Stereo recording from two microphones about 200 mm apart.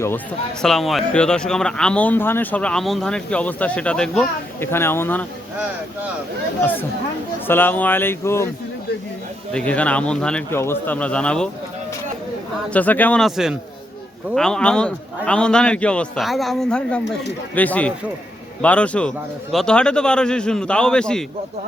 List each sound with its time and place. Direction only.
0.6 s speech: centre (ahead or behind)
6.6 s speech: 10° left (ahead or behind)
9.5 s speech: 5° left (ahead or behind)
12.7 s speech: 10° left (ahead or behind)